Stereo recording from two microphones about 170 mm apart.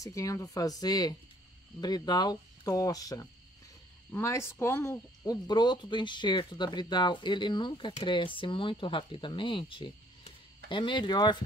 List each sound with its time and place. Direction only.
0.0 s speech: 20° left (ahead or behind)